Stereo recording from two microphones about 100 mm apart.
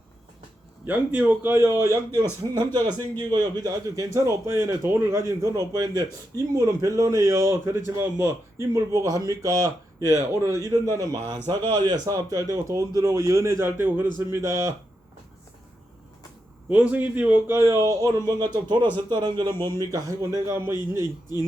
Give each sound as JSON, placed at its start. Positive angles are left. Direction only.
{"t": 0.9, "sound": "a man's voice", "side_deg": -15}
{"t": 1.8, "sound": "a man's voice", "side_deg": -30}
{"t": 2.6, "sound": "a man's voice", "side_deg": -45}
{"t": 11.3, "sound": "a man's voice", "side_deg": -45}
{"t": 16.6, "sound": "a man's voice", "side_deg": -15}